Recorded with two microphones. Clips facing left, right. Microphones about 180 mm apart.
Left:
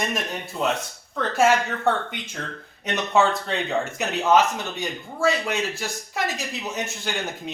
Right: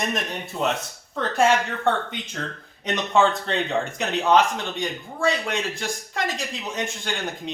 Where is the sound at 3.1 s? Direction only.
Centre (ahead or behind).